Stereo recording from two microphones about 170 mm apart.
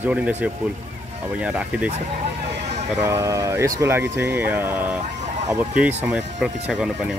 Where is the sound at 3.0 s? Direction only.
20° right (ahead or behind).